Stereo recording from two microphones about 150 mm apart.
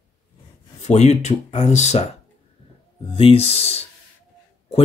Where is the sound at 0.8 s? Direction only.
50° left (ahead or behind).